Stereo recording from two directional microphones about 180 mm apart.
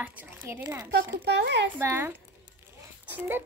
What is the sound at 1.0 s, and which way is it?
Speech, 70° right (ahead or behind).